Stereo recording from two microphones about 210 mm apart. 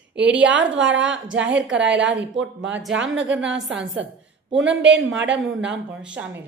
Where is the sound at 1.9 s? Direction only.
60° right (ahead or behind).